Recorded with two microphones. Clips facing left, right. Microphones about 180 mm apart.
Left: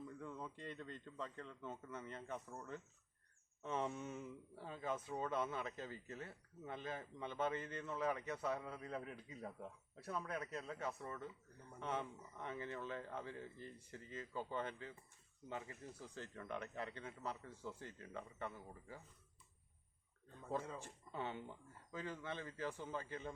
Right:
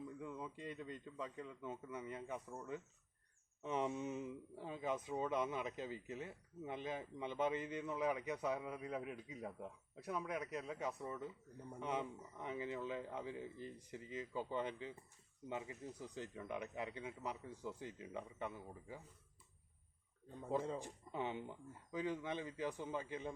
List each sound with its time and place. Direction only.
0.0 s a man's voice: 10° right (ahead or behind)
20.3 s speech: 15° right (ahead or behind)